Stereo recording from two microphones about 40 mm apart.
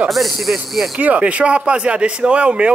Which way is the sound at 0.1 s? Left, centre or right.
Centre.